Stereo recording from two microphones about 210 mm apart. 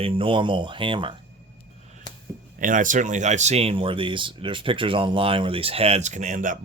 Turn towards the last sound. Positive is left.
turn(degrees=-35)  # may be behind; listen again after turning